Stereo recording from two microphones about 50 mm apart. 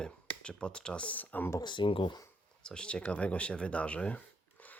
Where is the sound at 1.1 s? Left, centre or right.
Left.